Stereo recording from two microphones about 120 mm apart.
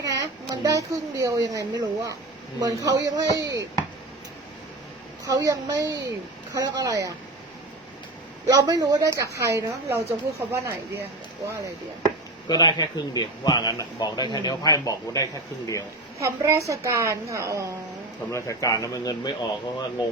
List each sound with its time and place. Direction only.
0.0 s a child's voice: 30° right (ahead or behind)
5.2 s a woman's voice: 30° right (ahead or behind)
8.4 s a woman's voice: 30° right (ahead or behind)
12.5 s a man's voice: 35° left (ahead or behind)
16.1 s a woman's voice: 25° right (ahead or behind)
18.3 s a man's voice: 25° left (ahead or behind)